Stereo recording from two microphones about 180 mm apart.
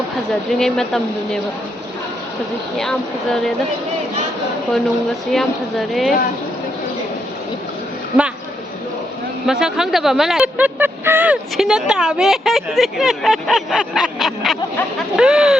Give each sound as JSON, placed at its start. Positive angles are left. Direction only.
{"t": 0.6, "sound": "speech", "side_deg": 5}
{"t": 5.3, "sound": "speech", "side_deg": 0}
{"t": 9.5, "sound": "speech", "side_deg": -5}